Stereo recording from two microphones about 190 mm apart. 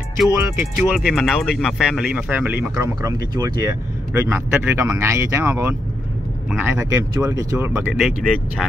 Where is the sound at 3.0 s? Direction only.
20° right (ahead or behind).